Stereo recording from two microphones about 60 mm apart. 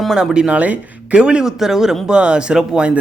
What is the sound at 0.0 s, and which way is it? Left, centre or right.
A man's voice, centre.